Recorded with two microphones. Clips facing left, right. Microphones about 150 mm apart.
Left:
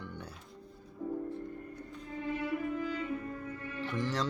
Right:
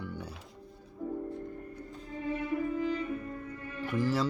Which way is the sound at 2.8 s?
30° right (ahead or behind).